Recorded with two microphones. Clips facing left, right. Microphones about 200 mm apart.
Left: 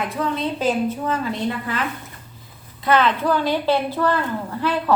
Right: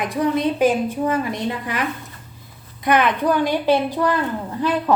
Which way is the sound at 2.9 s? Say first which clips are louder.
Right 1 dB; 15° right (ahead or behind).